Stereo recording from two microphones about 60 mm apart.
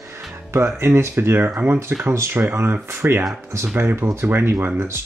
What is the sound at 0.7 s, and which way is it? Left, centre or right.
Speech, right.